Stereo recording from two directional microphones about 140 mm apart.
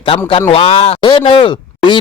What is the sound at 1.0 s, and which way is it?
Speech, 35° left (ahead or behind).